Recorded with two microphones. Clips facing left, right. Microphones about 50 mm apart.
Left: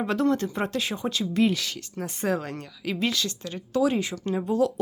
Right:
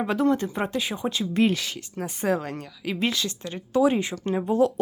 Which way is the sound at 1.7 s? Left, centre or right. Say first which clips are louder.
Right 1 dB; centre.